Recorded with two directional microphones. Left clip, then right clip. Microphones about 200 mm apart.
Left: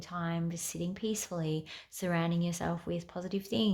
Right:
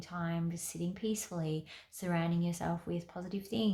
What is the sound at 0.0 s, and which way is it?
Speech, 35° left (ahead or behind).